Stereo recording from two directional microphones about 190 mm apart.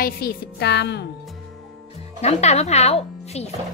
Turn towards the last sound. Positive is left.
turn(degrees=35)  # may be behind; listen again after turning